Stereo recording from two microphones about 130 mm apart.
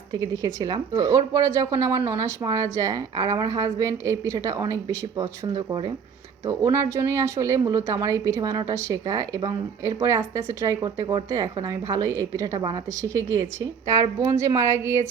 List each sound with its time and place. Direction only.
0.1 s a woman's voice: 30° right (ahead or behind)